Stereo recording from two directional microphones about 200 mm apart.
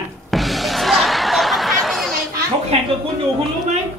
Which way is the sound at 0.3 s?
Centre (ahead or behind).